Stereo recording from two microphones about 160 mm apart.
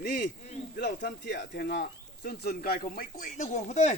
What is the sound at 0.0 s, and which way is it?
A man's voice, 90° left.